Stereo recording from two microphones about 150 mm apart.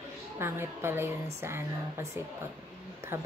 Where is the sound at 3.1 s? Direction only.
15° right (ahead or behind).